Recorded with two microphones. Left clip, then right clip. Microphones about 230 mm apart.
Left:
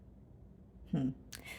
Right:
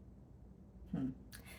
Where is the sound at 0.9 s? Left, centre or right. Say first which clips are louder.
Left 5 dB; left.